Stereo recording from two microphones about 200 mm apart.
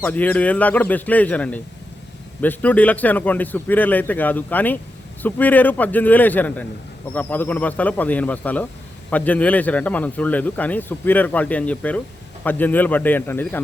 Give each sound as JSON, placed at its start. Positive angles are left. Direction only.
{"t": 0.0, "sound": "speech", "side_deg": 10}